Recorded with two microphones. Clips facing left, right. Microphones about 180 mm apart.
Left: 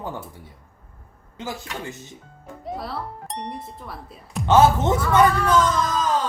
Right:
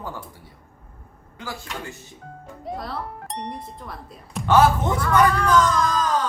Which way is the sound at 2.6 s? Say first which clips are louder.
Even; centre (ahead or behind).